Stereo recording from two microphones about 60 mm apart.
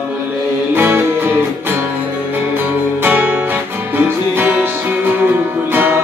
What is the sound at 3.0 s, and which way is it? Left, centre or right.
Music, right.